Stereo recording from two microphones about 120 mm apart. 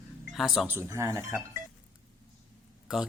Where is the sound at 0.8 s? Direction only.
25° right (ahead or behind).